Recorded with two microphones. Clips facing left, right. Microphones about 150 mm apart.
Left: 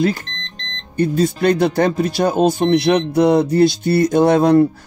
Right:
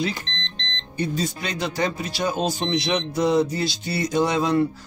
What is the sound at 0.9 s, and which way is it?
Speech, 55° left (ahead or behind).